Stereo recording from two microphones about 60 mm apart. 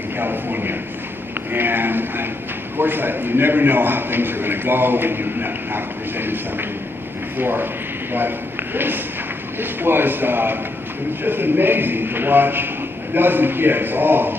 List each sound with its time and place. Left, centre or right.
0.2 s a man's voice: right
8.7 s a man's voice: right